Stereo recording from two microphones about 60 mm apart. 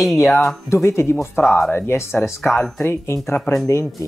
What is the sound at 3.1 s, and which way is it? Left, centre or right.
Speech, left.